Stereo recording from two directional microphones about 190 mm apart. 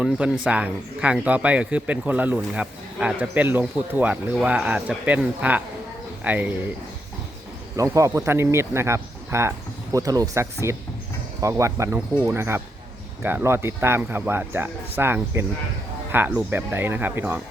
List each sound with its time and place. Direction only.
0.0 s speech: 5° right (ahead or behind)
7.8 s speech: 15° right (ahead or behind)